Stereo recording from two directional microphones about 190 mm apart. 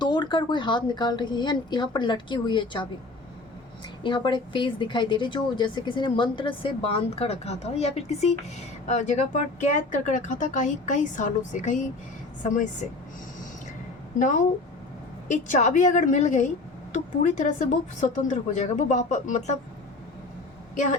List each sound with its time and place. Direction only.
0.0 s speech: 25° left (ahead or behind)
4.0 s a woman's voice: 25° left (ahead or behind); by 12.6 s 40° left (ahead or behind)
14.2 s speech: 40° left (ahead or behind)